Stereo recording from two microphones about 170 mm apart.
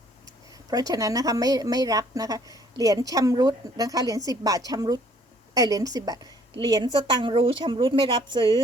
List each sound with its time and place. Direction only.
0.5 s a woman's voice: 20° right (ahead or behind)